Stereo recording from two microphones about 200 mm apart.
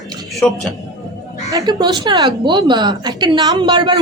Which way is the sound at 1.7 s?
20° right (ahead or behind).